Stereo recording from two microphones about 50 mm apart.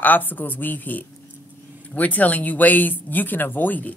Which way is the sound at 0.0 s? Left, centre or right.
Left.